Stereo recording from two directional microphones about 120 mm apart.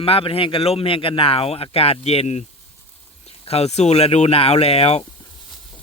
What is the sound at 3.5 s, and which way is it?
Speech, 60° left (ahead or behind).